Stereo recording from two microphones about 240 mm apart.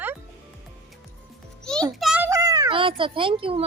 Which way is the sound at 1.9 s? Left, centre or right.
Centre.